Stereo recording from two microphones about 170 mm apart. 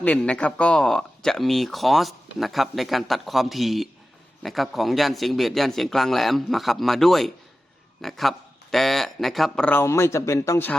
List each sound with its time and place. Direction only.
0.0 s speech: 5° left (ahead or behind)